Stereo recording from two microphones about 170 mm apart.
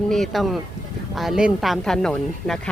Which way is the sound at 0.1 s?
Centre (ahead or behind).